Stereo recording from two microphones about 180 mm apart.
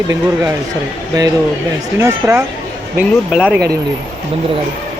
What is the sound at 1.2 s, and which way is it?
Speech, 20° right (ahead or behind).